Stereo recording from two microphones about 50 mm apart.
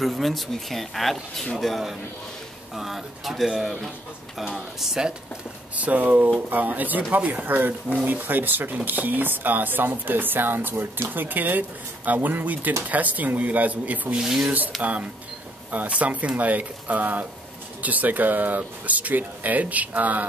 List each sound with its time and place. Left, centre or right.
0.0 s speech: centre
5.8 s speech: right
14.2 s speech: centre
14.8 s speech: right